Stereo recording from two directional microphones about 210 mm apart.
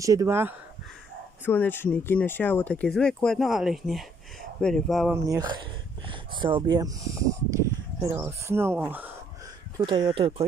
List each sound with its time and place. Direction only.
0.0 s speech: 15° right (ahead or behind)
1.4 s speech: 10° left (ahead or behind)
5.1 s speech: 15° right (ahead or behind)
9.8 s speech: 20° right (ahead or behind)